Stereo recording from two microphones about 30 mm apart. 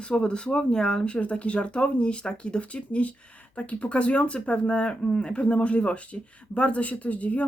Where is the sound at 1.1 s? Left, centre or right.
Left.